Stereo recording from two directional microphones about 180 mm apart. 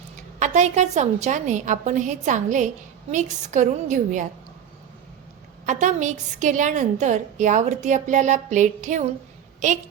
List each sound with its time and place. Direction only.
0.3 s a woman's voice: 40° right (ahead or behind)
5.6 s a woman's voice: 40° right (ahead or behind)